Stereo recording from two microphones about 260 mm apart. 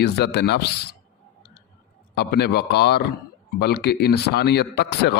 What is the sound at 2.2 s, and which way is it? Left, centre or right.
Speech, left.